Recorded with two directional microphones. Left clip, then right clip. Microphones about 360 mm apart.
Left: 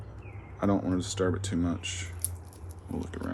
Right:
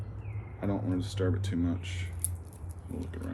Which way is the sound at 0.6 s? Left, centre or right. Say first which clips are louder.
Left 5 dB; centre.